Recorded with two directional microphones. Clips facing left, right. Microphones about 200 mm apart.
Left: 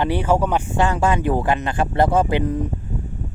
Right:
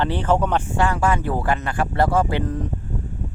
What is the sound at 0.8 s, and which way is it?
Speech, 20° left (ahead or behind).